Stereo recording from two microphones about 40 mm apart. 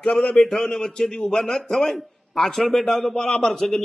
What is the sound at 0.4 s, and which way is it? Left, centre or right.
A man's voice, centre.